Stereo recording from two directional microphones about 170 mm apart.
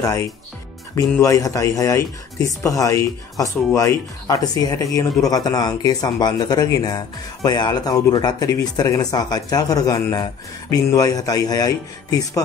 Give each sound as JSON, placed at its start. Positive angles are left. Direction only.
{"t": 0.0, "sound": "speech", "side_deg": 15}